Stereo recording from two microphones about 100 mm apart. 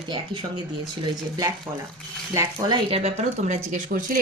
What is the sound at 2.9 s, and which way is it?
Speech, 90° right.